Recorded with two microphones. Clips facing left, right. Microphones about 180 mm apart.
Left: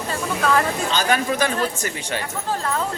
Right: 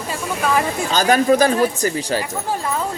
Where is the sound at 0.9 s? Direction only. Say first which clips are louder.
Right 9 dB; 40° right (ahead or behind).